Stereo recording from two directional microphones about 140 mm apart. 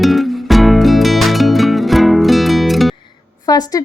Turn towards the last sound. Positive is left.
turn(degrees=25)  # may be behind; listen again after turning